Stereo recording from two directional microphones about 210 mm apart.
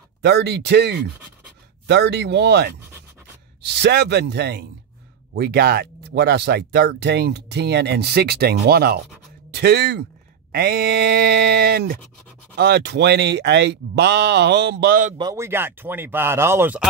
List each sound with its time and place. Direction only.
0.2 s speech: 55° right (ahead or behind)
15.1 s speech: 15° right (ahead or behind)